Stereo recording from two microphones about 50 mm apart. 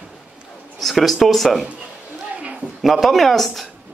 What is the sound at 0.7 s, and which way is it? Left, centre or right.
Speech, centre.